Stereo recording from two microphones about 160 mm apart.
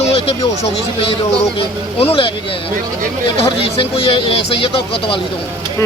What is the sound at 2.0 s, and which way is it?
Speech, 35° left (ahead or behind).